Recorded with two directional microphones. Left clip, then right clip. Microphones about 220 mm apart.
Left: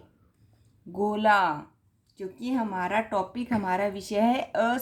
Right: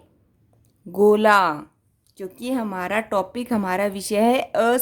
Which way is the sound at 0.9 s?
55° right (ahead or behind).